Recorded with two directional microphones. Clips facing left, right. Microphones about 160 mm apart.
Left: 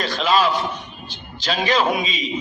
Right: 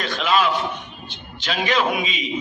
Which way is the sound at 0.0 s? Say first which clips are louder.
Left 1 dB; 35° left (ahead or behind).